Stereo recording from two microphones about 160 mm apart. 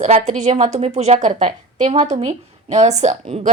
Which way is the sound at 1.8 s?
30° right (ahead or behind).